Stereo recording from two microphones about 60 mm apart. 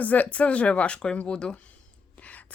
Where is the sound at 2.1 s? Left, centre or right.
Left.